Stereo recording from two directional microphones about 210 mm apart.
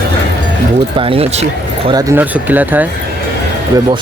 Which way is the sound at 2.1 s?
10° right (ahead or behind).